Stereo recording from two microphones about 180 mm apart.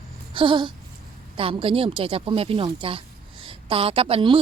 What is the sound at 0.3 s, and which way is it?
A woman's voice, 25° right (ahead or behind).